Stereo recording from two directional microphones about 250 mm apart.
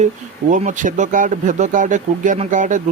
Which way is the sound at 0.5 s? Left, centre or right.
Right.